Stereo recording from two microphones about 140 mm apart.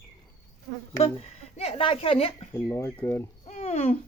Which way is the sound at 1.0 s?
50° left (ahead or behind).